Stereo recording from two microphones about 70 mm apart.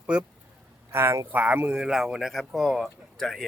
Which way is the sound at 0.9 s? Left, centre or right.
Right.